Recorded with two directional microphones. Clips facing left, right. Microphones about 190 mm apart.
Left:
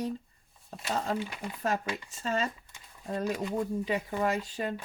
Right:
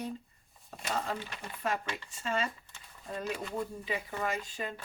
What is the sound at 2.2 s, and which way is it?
Speech, 40° left (ahead or behind).